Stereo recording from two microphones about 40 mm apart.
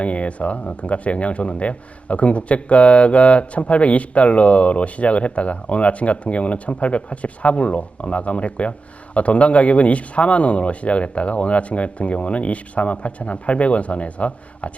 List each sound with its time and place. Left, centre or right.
0.0 s speech: left